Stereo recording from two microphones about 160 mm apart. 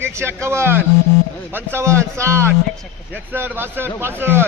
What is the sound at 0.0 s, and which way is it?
Speech, 15° right (ahead or behind).